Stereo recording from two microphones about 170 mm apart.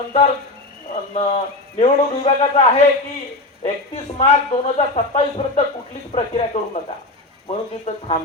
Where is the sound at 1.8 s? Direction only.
35° left (ahead or behind).